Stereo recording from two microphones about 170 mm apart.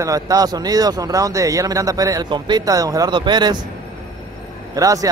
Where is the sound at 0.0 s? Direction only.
20° right (ahead or behind).